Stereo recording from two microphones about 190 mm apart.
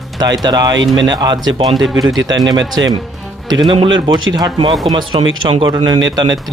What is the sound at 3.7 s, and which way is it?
A man's voice, 25° right (ahead or behind).